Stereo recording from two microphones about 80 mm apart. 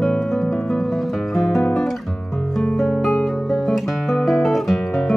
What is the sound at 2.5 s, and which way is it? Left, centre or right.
Guitar, centre.